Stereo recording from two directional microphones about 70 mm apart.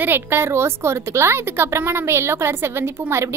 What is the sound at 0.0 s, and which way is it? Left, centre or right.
A woman's voice, right.